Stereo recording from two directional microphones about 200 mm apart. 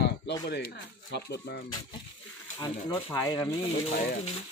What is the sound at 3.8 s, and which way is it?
Speech, 30° left (ahead or behind).